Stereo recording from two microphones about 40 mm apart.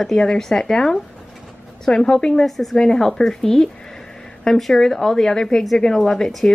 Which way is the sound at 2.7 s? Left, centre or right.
Centre.